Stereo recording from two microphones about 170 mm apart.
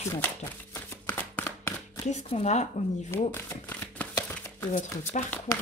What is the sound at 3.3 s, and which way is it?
Shuffling cards, 10° left (ahead or behind).